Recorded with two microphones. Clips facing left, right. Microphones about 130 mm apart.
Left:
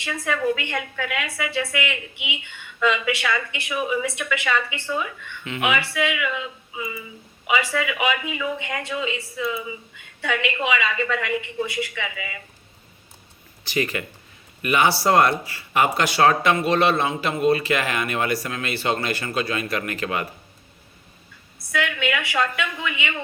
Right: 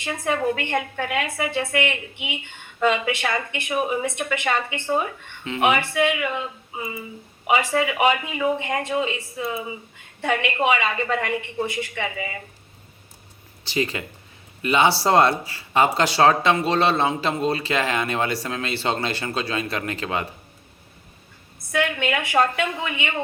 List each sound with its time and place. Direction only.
0.0 s a woman's voice: 40° right (ahead or behind)
13.7 s speech: 25° right (ahead or behind)
21.7 s speech: 40° right (ahead or behind)